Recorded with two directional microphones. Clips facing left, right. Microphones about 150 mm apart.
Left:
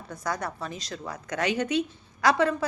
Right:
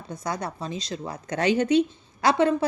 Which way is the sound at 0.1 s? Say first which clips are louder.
Right 1 dB; 20° right (ahead or behind).